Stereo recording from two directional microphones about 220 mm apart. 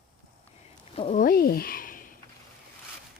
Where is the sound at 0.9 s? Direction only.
25° left (ahead or behind).